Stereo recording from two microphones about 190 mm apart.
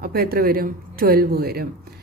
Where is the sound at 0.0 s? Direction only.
50° right (ahead or behind).